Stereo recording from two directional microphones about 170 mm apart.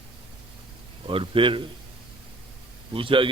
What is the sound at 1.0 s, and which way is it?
Speech, 30° right (ahead or behind).